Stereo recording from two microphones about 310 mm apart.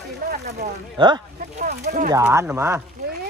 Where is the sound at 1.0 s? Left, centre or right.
Centre.